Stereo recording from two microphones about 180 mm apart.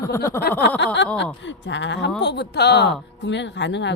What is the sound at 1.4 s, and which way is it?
Speech, 90° left.